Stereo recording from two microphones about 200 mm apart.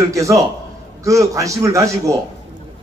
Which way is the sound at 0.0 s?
15° right (ahead or behind).